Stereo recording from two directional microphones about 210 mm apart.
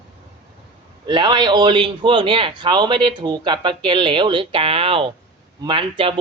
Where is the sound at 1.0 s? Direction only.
20° right (ahead or behind).